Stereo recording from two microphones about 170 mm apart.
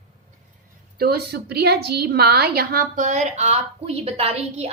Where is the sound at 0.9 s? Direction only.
65° right (ahead or behind); by 4.7 s 35° right (ahead or behind).